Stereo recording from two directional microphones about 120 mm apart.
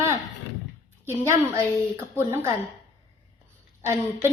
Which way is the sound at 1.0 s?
20° right (ahead or behind).